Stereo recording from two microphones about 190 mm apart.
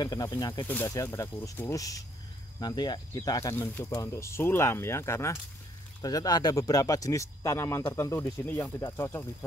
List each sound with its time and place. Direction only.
0.0 s speech: 20° left (ahead or behind)